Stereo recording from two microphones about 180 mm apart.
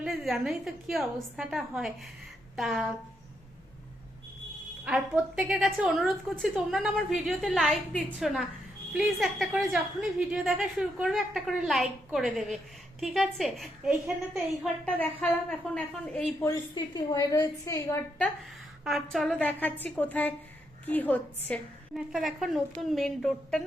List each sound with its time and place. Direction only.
0.0 s a woman's voice: centre (ahead or behind)
4.9 s a woman's voice: 5° right (ahead or behind)
16.5 s a woman's voice: 25° left (ahead or behind)
18.9 s a woman's voice: centre (ahead or behind)